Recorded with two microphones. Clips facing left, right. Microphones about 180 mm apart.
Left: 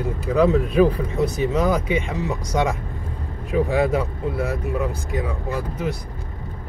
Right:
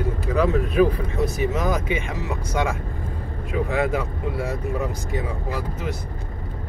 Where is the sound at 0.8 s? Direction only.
30° left (ahead or behind).